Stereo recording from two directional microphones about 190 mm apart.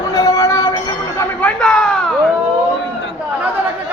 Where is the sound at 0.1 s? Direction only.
20° left (ahead or behind); by 2.3 s centre (ahead or behind).